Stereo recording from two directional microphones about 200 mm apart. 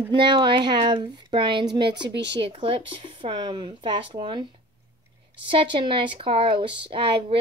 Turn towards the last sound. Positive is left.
turn(degrees=-25)  # may be behind; listen again after turning